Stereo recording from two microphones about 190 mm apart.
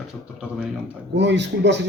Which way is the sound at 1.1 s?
65° right (ahead or behind).